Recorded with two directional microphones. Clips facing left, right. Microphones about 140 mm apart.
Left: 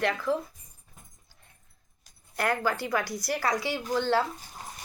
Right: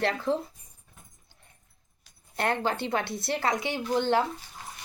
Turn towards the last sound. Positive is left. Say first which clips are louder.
# right 1 dB
turn(degrees=-20)  # may be behind; listen again after turning